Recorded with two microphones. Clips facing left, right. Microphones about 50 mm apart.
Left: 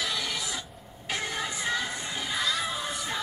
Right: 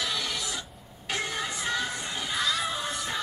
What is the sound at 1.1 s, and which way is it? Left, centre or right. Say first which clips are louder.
Music: even; centre.